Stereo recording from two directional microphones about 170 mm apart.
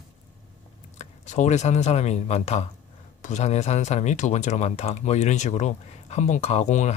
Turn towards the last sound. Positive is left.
turn(degrees=45)  # may be behind; listen again after turning